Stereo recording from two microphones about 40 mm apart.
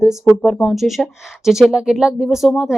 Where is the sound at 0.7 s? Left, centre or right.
Centre.